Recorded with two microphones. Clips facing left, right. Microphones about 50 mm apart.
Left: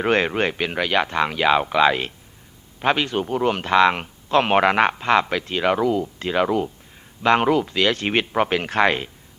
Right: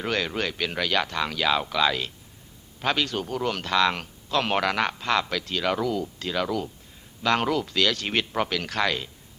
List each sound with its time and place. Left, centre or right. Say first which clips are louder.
0.0 s a man's voice: left 7 dB; left